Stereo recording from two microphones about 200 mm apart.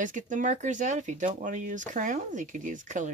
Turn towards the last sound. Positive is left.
turn(degrees=-40)  # may be behind; listen again after turning